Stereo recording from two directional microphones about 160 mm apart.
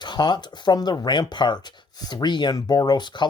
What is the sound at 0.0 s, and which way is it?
Speech, 25° left (ahead or behind).